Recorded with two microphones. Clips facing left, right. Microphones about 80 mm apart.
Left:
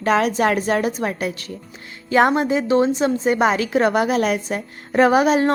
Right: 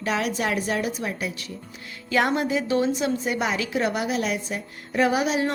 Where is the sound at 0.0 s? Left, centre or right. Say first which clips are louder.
Left 8 dB; left.